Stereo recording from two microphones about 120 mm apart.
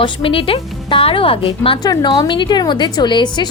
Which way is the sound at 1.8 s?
35° left (ahead or behind).